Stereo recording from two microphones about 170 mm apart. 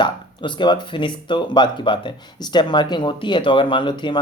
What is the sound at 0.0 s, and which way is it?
Speech, 25° left (ahead or behind).